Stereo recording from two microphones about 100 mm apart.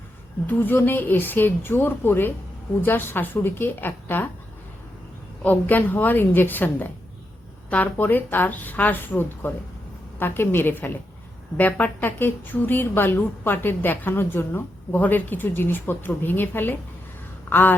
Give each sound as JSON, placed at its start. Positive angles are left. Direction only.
{"t": 0.4, "sound": "a woman's voice", "side_deg": 20}
{"t": 5.4, "sound": "a woman's voice", "side_deg": 20}
{"t": 17.5, "sound": "a sound", "side_deg": 20}